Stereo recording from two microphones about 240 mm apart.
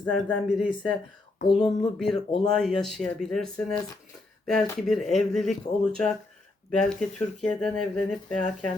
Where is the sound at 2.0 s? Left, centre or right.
Centre.